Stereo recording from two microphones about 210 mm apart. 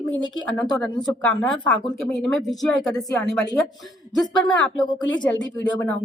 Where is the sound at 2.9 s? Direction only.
15° left (ahead or behind).